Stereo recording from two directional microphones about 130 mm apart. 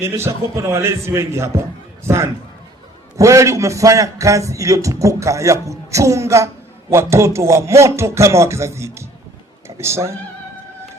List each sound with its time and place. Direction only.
0.0 s a man's voice: 20° right (ahead or behind)